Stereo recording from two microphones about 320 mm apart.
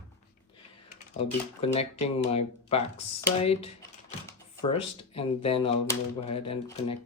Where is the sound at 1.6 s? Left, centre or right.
Centre.